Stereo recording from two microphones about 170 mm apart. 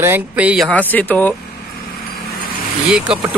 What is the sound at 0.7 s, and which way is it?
Speech, 10° left (ahead or behind).